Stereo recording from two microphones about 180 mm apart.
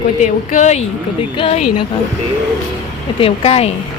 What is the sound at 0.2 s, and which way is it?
Speech, 40° left (ahead or behind).